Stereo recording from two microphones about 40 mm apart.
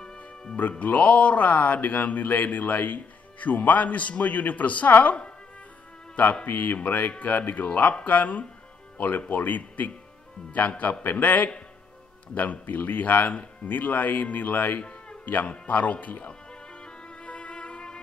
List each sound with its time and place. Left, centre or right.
0.0 s music: centre
0.6 s a woman's voice: left
6.4 s speech: left
14.8 s a sound: left
15.2 s speech: left
15.6 s speech: left
16.8 s music: left